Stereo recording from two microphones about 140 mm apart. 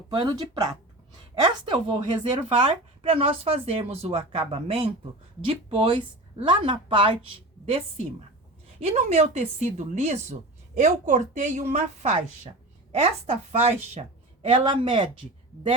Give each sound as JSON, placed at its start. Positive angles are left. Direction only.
{"t": 0.1, "sound": "a woman's voice", "side_deg": -35}
{"t": 7.6, "sound": "a woman's voice", "side_deg": -50}
{"t": 12.9, "sound": "speech", "side_deg": -50}
{"t": 14.4, "sound": "a woman's voice", "side_deg": -35}